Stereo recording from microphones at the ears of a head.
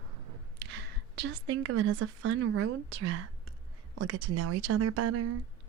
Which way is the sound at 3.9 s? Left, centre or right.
Right.